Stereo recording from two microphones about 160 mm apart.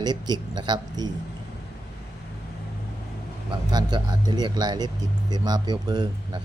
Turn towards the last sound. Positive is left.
turn(degrees=-25)  # may be behind; listen again after turning